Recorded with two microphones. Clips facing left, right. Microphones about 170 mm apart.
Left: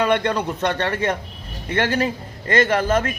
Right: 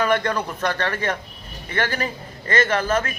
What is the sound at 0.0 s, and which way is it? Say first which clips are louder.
Speech: left 2 dB; 20° left (ahead or behind).